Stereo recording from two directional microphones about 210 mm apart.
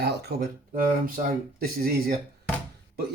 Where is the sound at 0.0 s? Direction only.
50° right (ahead or behind).